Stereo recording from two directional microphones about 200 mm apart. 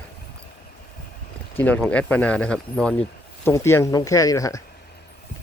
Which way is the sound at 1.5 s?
10° left (ahead or behind).